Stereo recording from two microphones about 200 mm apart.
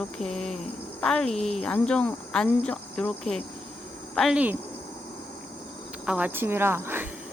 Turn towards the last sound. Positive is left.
turn(degrees=-10)  # may be behind; listen again after turning